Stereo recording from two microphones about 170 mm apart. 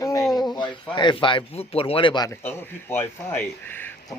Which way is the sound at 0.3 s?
25° left (ahead or behind).